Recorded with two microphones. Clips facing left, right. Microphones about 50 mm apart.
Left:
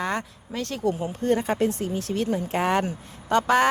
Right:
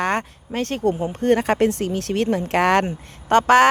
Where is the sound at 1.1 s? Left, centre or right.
Right.